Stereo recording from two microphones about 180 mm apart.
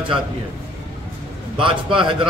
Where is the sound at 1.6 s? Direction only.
30° right (ahead or behind).